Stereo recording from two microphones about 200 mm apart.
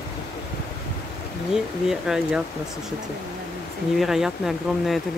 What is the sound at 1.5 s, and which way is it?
Speech, centre (ahead or behind).